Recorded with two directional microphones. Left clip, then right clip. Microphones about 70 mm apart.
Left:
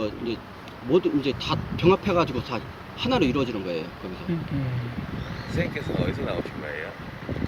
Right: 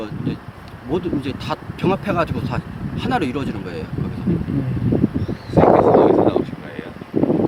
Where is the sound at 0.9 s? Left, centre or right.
Right.